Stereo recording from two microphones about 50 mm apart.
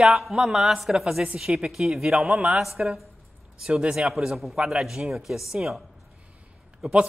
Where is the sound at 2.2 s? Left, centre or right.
Right.